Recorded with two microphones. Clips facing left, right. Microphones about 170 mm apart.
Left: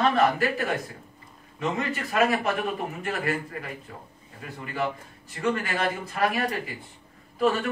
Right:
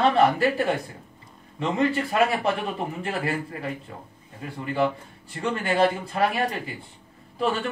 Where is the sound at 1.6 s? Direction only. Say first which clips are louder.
Right 5 dB; 30° right (ahead or behind).